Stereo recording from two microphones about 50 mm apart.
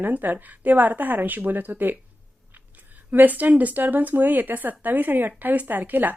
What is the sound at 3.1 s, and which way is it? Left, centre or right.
Speech, right.